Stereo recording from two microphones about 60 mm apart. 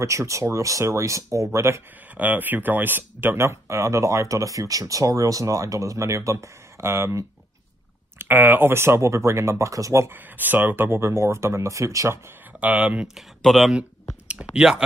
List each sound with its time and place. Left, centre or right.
0.0 s speech: right
2.1 s speech: right
3.3 s speech: right
8.2 s speech: right
10.0 s speech: right
12.5 s speech: right
13.4 s speech: centre
14.5 s speech: centre